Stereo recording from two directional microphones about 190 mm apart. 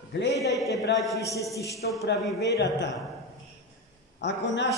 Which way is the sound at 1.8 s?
60° left (ahead or behind).